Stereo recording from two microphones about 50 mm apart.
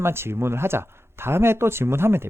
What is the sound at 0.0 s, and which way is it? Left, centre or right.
Speech, right.